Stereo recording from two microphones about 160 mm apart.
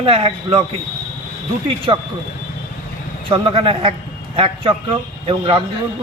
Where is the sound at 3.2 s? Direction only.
30° right (ahead or behind).